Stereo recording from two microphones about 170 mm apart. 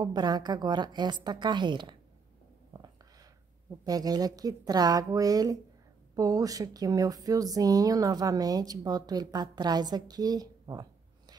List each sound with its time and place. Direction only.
0.0 s speech: 25° right (ahead or behind)
3.8 s speech: 20° right (ahead or behind)